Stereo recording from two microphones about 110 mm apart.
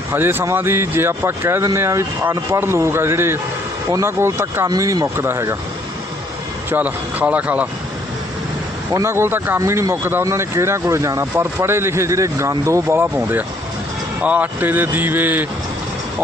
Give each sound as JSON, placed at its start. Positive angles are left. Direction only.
{"t": 0.1, "sound": "speech", "side_deg": -20}
{"t": 4.7, "sound": "speech", "side_deg": -35}
{"t": 6.7, "sound": "speech", "side_deg": -15}
{"t": 8.9, "sound": "speech", "side_deg": -25}